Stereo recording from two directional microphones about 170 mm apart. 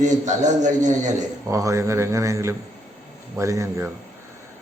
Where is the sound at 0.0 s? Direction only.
45° right (ahead or behind).